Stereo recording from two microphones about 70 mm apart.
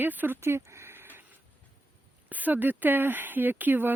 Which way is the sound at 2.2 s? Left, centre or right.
Right.